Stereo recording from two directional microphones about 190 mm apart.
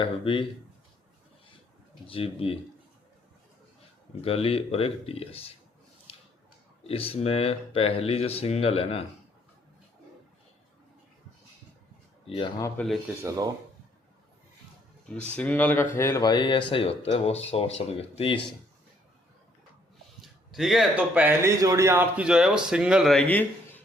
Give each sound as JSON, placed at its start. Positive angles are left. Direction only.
{"t": 0.0, "sound": "speech", "side_deg": 25}
{"t": 2.0, "sound": "speech", "side_deg": 30}
{"t": 4.2, "sound": "speech", "side_deg": 30}
{"t": 6.8, "sound": "speech", "side_deg": 30}
{"t": 12.2, "sound": "speech", "side_deg": 30}
{"t": 12.7, "sound": "speech", "side_deg": 5}
{"t": 13.2, "sound": "speech", "side_deg": -20}
{"t": 15.4, "sound": "speech", "side_deg": 10}
{"t": 20.2, "sound": "speech", "side_deg": 0}